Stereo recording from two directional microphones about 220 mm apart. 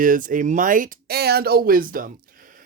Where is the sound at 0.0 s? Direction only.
40° right (ahead or behind).